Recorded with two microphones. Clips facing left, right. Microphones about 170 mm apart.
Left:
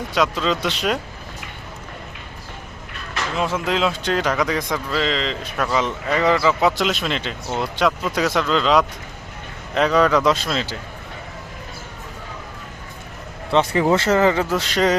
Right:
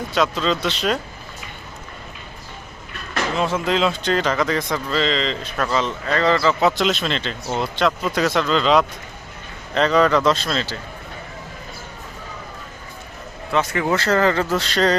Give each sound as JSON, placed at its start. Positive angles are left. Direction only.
{"t": 0.1, "sound": "speech", "side_deg": 5}
{"t": 3.3, "sound": "speech", "side_deg": 5}
{"t": 5.8, "sound": "speech", "side_deg": 15}
{"t": 13.5, "sound": "speech", "side_deg": 30}